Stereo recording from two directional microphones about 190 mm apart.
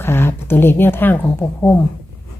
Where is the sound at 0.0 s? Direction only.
10° left (ahead or behind).